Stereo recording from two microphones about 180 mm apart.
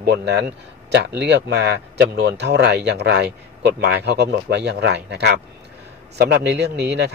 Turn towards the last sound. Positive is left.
turn(degrees=-70)  # may be behind; listen again after turning